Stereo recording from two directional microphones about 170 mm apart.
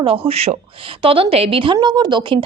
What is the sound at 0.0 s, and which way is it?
A woman's voice, 35° right (ahead or behind).